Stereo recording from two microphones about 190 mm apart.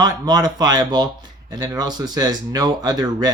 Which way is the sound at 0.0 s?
20° right (ahead or behind).